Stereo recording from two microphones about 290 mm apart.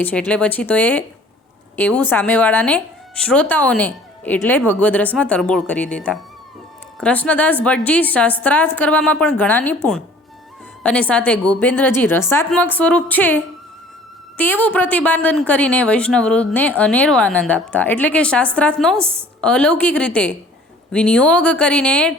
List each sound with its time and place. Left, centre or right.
0.0 s speech: centre
11.0 s a woman's voice: centre